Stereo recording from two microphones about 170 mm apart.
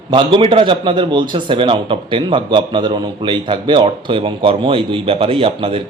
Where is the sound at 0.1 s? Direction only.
30° right (ahead or behind).